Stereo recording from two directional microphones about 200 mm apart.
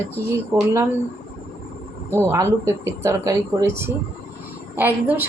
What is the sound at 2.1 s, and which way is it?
A woman's voice, 15° right (ahead or behind).